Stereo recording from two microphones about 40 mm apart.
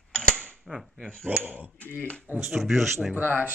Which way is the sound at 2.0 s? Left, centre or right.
Left.